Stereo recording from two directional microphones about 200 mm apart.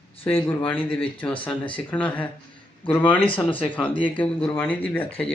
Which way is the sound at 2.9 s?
25° left (ahead or behind).